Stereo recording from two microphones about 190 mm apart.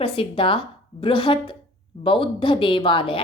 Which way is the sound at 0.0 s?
25° left (ahead or behind).